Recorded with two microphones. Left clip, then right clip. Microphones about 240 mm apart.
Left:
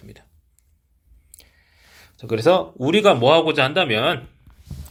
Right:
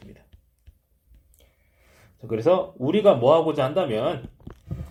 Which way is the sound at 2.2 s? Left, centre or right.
Left.